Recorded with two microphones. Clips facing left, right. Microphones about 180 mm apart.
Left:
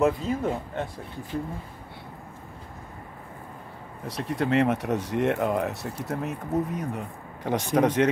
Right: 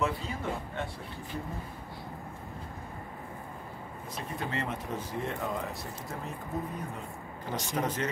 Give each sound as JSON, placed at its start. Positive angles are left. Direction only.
{"t": 0.0, "sound": "speech", "side_deg": 45}
{"t": 4.1, "sound": "speech", "side_deg": 80}
{"t": 7.4, "sound": "speech", "side_deg": 70}